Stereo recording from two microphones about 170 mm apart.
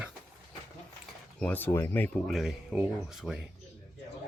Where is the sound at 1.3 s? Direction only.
10° left (ahead or behind).